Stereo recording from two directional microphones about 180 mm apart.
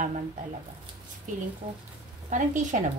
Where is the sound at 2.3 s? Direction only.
45° right (ahead or behind).